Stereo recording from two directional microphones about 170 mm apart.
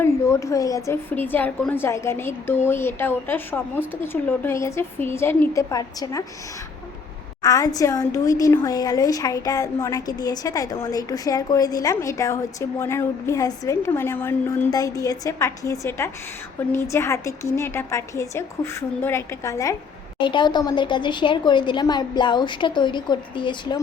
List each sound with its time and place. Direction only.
0.0 s a woman's voice: 15° left (ahead or behind)
7.4 s a woman's voice: 20° left (ahead or behind)